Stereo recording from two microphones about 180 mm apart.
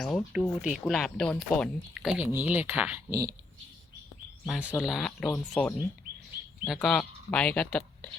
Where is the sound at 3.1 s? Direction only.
20° right (ahead or behind).